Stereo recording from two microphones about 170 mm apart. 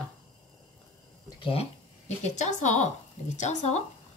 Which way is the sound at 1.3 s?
30° left (ahead or behind).